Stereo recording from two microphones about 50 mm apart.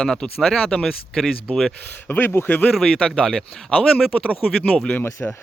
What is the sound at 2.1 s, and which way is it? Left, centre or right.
Speech, left.